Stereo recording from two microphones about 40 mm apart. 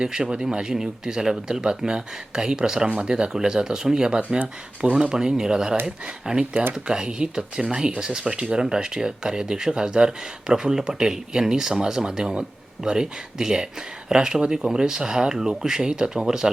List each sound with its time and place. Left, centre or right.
0.0 s speech: right